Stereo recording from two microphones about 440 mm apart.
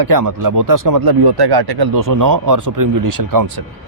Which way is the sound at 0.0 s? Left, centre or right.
Right.